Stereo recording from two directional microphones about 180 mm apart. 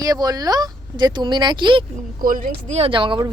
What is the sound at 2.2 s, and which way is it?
Speech, 50° right (ahead or behind).